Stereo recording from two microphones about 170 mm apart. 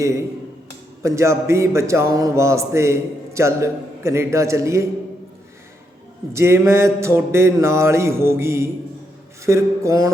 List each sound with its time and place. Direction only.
1.0 s a man's voice: 15° right (ahead or behind)
6.3 s a man's voice: 15° right (ahead or behind)